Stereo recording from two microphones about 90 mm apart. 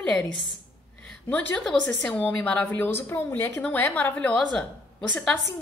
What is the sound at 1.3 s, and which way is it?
A woman's voice, 10° left (ahead or behind).